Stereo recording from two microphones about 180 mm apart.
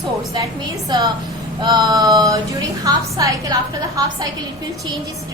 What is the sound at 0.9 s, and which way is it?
A woman's voice, 20° right (ahead or behind).